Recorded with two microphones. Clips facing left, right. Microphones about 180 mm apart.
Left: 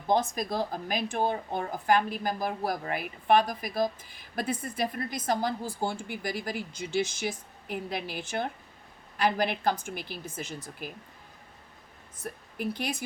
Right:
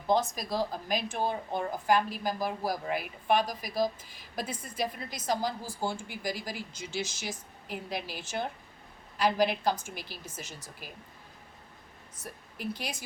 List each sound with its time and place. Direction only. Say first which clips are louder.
0.1 s a woman's voice: left 1 dB; 50° left (ahead or behind)
12.2 s speech: left 4 dB; 55° left (ahead or behind)